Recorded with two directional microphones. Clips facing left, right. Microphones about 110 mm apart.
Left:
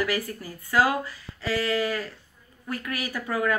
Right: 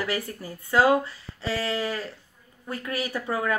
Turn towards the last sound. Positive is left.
turn(degrees=-25)  # may be behind; listen again after turning